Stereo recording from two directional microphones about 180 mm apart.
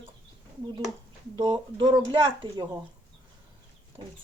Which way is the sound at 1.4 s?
25° right (ahead or behind).